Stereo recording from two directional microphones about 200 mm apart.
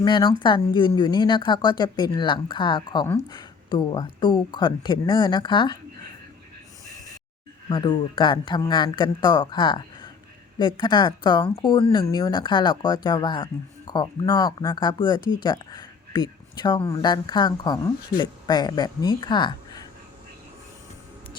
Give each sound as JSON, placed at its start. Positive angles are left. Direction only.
{"t": 0.0, "sound": "speech", "side_deg": 20}
{"t": 7.7, "sound": "speech", "side_deg": 25}